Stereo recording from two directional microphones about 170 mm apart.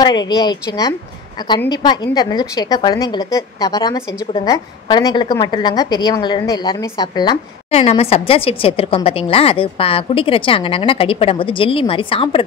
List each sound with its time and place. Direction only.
0.0 s a woman's voice: 25° left (ahead or behind)
7.7 s a woman's voice: 40° left (ahead or behind)